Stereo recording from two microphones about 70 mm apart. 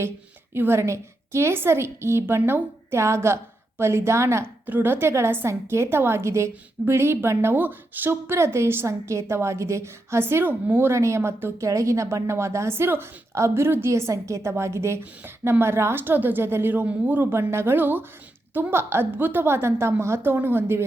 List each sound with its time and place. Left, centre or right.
0.5 s a woman's voice: right
4.6 s a woman's voice: right
11.6 s a woman's voice: right
17.3 s a woman's voice: right